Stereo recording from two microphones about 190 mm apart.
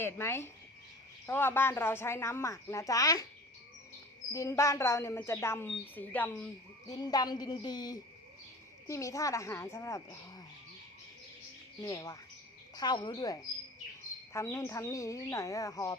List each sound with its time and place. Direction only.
0.0 s a woman's voice: 10° left (ahead or behind)
4.3 s a woman's voice: 15° left (ahead or behind)
6.8 s a woman's voice: 20° left (ahead or behind)
11.8 s a woman's voice: 20° left (ahead or behind)